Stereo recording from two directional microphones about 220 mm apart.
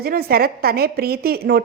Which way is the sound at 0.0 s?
45° right (ahead or behind).